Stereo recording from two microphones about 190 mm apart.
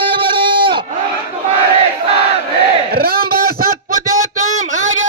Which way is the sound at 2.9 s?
55° right (ahead or behind).